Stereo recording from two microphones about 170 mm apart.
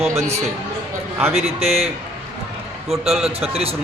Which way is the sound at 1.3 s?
40° right (ahead or behind).